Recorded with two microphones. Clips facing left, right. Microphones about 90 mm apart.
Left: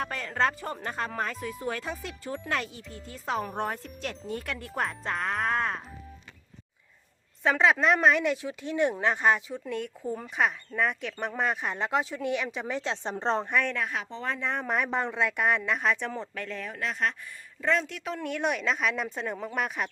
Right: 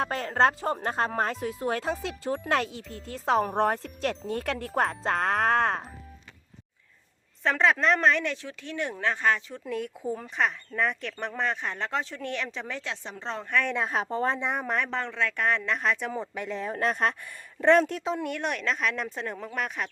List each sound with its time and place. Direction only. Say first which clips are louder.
0.0 s speech: right 4 dB; 35° right (ahead or behind)
4.3 s speech: right 4 dB; 55° right (ahead or behind)
7.4 s speech: even; 5° left (ahead or behind)
9.6 s speech: right 3 dB; centre (ahead or behind)
12.8 s a woman's voice: left 6 dB; 30° left (ahead or behind)
13.9 s speech: right 6 dB; 40° right (ahead or behind)
14.3 s speech: right 1 dB; 20° right (ahead or behind)
14.7 s speech: left 1 dB; 10° left (ahead or behind)
16.1 s speech: right 3 dB; 15° right (ahead or behind)
16.6 s speech: right 4 dB; 40° right (ahead or behind)
18.2 s speech: left 1 dB; centre (ahead or behind)